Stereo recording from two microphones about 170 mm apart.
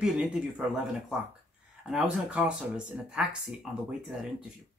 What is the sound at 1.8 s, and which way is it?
Speech, 5° right (ahead or behind).